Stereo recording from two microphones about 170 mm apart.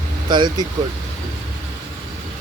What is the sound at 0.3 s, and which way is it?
Speech, 25° right (ahead or behind).